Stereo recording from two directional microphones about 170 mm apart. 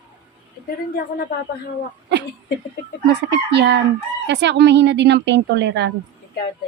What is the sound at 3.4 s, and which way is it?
Chicken, 85° right.